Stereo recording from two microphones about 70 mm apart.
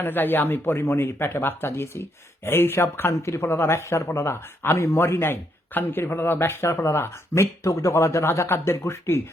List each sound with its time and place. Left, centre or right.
0.0 s speech: left
3.1 s speech: left